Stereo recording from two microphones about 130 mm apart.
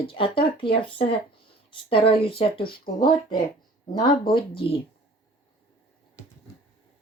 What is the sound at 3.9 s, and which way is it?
Speech, 40° left (ahead or behind).